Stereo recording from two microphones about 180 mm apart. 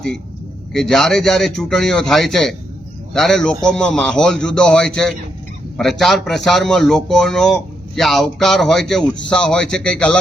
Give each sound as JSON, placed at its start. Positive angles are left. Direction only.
{"t": 0.7, "sound": "a man's voice", "side_deg": 0}